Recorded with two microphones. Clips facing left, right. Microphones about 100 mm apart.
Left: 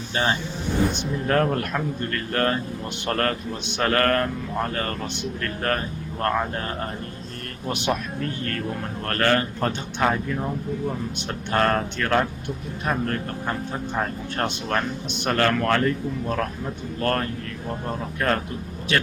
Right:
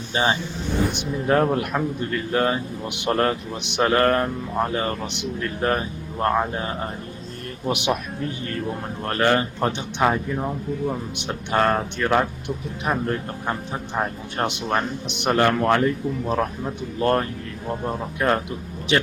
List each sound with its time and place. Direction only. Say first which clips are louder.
0.1 s a man's voice: right 2 dB; 15° right (ahead or behind)
7.7 s a man's voice: right 2 dB; 15° right (ahead or behind)